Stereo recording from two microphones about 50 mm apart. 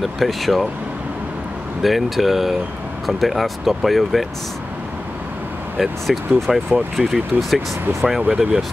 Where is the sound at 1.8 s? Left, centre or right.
Centre.